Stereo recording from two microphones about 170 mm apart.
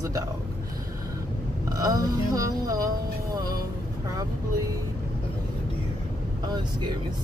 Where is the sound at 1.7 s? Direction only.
20° right (ahead or behind).